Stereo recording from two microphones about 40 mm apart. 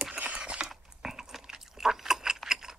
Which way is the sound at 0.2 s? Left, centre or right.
Right.